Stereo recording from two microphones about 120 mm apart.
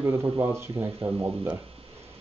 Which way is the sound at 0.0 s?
20° right (ahead or behind).